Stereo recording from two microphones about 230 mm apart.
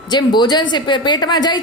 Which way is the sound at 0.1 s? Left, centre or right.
Centre.